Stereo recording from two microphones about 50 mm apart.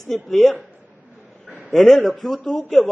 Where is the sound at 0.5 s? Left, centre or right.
Right.